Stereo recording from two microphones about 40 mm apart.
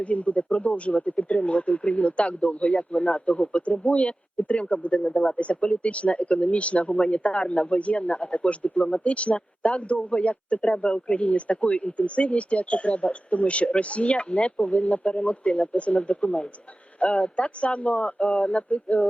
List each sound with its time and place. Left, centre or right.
0.0 s speech: left
5.0 s speech: centre
5.4 s speech: left